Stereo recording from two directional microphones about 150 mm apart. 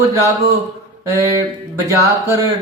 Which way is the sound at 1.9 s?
20° right (ahead or behind).